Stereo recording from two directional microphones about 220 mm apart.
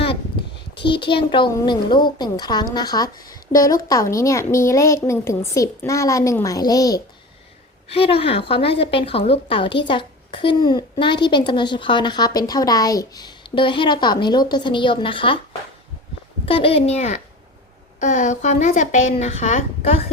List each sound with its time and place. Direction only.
0.8 s a woman's voice: 20° left (ahead or behind)
16.5 s a woman's voice: 25° left (ahead or behind)